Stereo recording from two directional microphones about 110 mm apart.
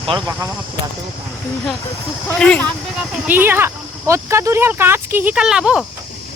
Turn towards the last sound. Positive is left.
turn(degrees=-5)  # may be behind; listen again after turning